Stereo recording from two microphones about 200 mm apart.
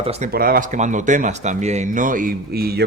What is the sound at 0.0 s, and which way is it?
Speech, 30° right (ahead or behind).